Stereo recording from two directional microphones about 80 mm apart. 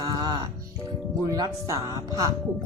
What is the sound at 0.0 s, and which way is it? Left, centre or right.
Music, right.